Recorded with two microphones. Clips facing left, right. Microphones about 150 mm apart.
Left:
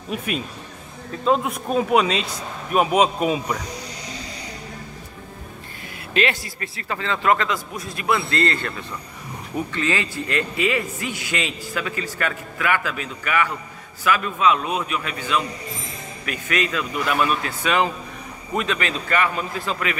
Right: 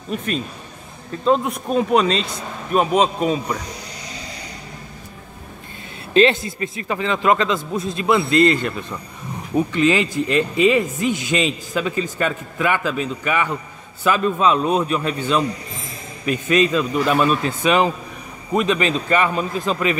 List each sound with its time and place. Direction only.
0.1 s speech: 10° left (ahead or behind)
6.1 s a man's voice: 25° right (ahead or behind)